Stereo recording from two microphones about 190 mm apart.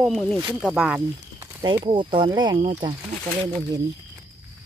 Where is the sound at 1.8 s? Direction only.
25° right (ahead or behind).